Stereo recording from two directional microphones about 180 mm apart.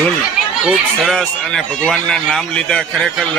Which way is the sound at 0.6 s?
Centre (ahead or behind).